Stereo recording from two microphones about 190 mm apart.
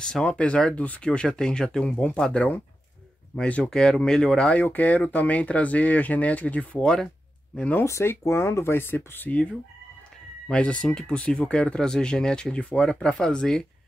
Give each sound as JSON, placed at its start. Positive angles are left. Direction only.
{"t": 0.0, "sound": "speech", "side_deg": 5}
{"t": 10.5, "sound": "speech", "side_deg": 5}